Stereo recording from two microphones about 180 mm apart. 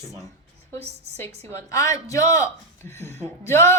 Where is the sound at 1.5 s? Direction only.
15° left (ahead or behind).